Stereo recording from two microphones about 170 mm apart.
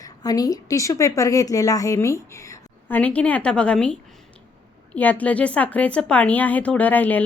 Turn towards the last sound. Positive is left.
turn(degrees=10)  # may be behind; listen again after turning